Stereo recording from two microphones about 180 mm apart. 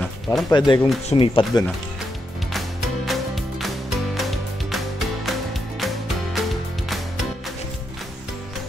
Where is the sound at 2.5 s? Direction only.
Centre (ahead or behind).